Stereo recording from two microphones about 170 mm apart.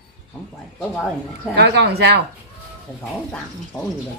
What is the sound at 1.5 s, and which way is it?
Speech, 90° right.